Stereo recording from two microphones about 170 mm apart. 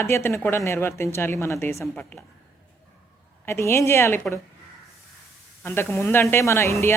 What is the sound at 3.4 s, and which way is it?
Speech, 15° left (ahead or behind).